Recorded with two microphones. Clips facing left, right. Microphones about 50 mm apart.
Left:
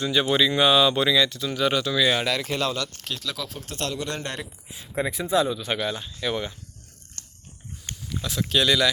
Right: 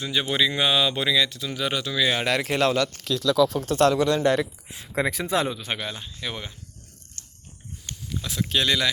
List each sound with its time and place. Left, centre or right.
0.0 s speech: centre
2.2 s speech: right
3.6 s speech: right
5.7 s speech: centre
8.2 s speech: centre